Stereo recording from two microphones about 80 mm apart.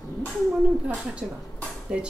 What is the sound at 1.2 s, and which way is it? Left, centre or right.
Cutlery, centre.